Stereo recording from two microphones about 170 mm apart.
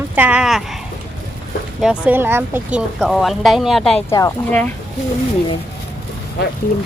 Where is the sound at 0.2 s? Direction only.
5° right (ahead or behind).